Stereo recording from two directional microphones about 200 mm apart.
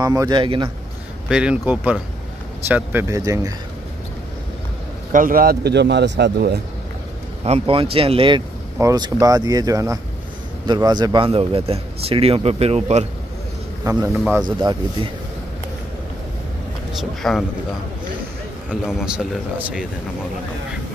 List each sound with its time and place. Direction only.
0.0 s a man's voice: 20° right (ahead or behind)
1.3 s speech: 5° right (ahead or behind)
5.1 s speech: 45° right (ahead or behind)
7.4 s a man's voice: 30° right (ahead or behind)
13.9 s a man's voice: 15° right (ahead or behind)
17.2 s speech: centre (ahead or behind)
18.7 s speech: centre (ahead or behind)